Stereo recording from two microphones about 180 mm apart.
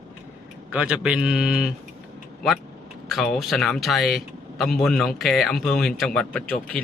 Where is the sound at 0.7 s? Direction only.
5° right (ahead or behind).